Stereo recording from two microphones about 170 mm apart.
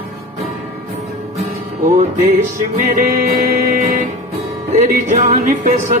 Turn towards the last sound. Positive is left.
turn(degrees=-45)  # may be behind; listen again after turning